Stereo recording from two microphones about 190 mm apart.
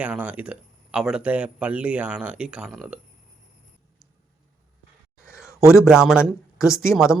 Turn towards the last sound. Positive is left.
turn(degrees=0)  # may be behind; listen again after turning